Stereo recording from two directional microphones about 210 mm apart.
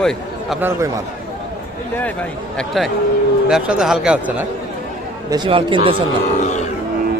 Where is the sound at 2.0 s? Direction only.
5° left (ahead or behind).